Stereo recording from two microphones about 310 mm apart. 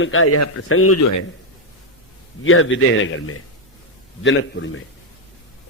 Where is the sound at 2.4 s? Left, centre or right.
Left.